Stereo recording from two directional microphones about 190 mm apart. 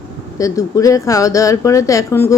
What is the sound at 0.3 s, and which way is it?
A woman's voice, 15° left (ahead or behind).